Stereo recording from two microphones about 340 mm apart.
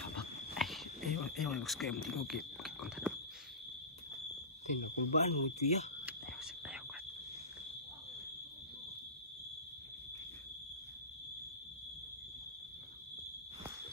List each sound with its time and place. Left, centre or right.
0.6 s a sound: centre
4.6 s speech: centre
6.0 s whispering: centre